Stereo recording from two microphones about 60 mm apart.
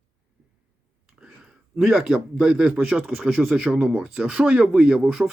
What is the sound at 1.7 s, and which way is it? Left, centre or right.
Speech, centre.